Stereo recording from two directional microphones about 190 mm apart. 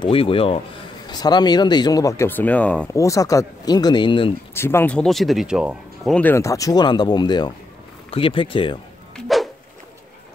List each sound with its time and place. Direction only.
0.0 s speech: 30° left (ahead or behind)
4.6 s speech: 10° left (ahead or behind); by 6.1 s 5° right (ahead or behind)
6.1 s speech: 10° left (ahead or behind); by 8.7 s 25° left (ahead or behind)
9.1 s dog: centre (ahead or behind)